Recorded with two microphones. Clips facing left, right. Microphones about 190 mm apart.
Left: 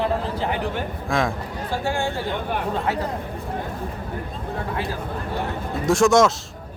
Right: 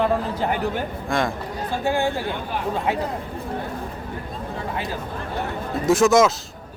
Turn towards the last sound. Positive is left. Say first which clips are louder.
# even
turn(degrees=0)  # may be behind; listen again after turning